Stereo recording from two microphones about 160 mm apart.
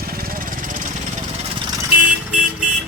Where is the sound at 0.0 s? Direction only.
65° right (ahead or behind).